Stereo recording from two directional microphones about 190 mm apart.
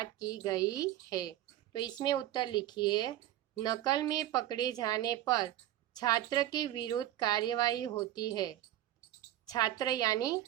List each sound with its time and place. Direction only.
0.0 s speech: 20° left (ahead or behind)